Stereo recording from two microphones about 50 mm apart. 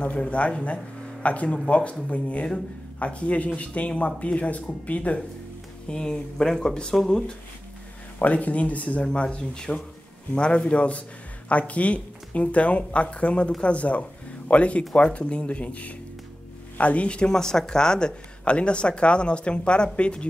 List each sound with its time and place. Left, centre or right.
0.0 s speech: left
5.9 s speech: centre
8.2 s speech: left